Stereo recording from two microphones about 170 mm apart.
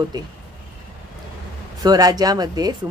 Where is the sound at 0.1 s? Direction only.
25° right (ahead or behind).